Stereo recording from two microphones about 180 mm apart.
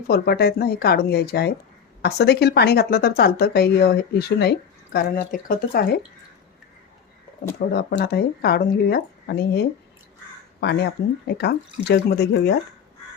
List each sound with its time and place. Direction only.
0.1 s speech: 60° left (ahead or behind)
7.7 s speech: 60° left (ahead or behind)